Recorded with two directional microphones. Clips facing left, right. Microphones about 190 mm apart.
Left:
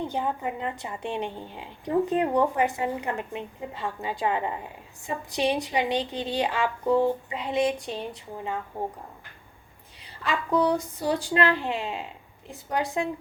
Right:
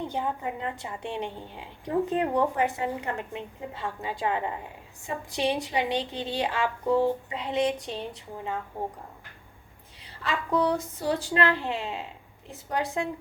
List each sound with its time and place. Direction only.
0.1 s a woman's voice: 15° left (ahead or behind)
10.5 s a woman's voice: 15° left (ahead or behind)